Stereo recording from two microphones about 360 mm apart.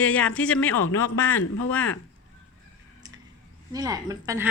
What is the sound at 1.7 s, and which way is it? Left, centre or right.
Speech, centre.